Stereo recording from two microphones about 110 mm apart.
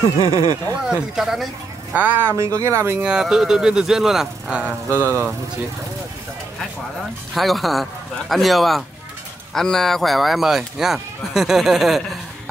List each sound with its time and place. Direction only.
0.2 s speech: 40° right (ahead or behind)
1.1 s speech: 5° right (ahead or behind)
2.0 s speech: 15° right (ahead or behind)
2.3 s speech: 25° right (ahead or behind)
3.0 s speech: 5° right (ahead or behind)
4.8 s speech: 25° right (ahead or behind)
7.3 s speech: centre (ahead or behind)